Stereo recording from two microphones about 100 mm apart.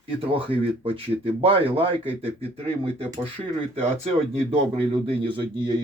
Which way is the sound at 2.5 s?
90° right.